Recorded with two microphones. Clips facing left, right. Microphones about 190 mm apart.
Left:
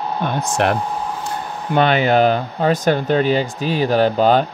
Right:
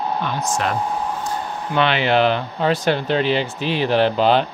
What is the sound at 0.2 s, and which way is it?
Speech, 55° left (ahead or behind).